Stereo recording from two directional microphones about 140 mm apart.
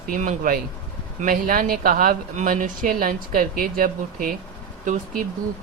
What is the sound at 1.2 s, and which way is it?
Speech, 85° right.